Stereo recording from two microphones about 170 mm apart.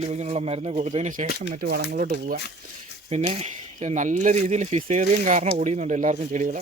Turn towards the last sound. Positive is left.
turn(degrees=-45)  # may be behind; listen again after turning